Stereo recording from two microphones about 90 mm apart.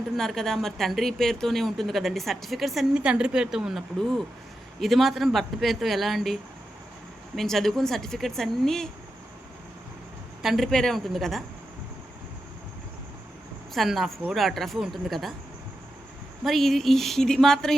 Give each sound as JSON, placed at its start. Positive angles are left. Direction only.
{"t": 0.2, "sound": "a woman's voice", "side_deg": 5}
{"t": 10.4, "sound": "a woman's voice", "side_deg": 0}
{"t": 13.7, "sound": "a woman's voice", "side_deg": 0}
{"t": 16.4, "sound": "a woman's voice", "side_deg": 0}